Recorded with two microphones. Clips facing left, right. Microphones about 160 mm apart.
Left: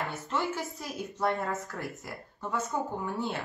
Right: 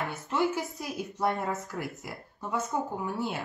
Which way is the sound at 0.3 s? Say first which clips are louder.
Right 5 dB; 10° right (ahead or behind).